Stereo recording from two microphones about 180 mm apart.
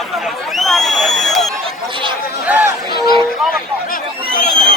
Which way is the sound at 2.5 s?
10° right (ahead or behind).